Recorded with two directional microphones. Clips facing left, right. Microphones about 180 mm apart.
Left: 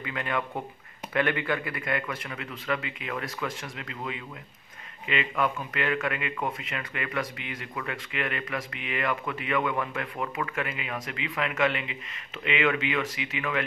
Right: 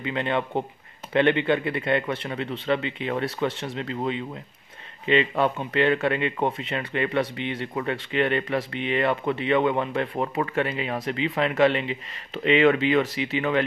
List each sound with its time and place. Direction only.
0.0 s speech: 25° right (ahead or behind)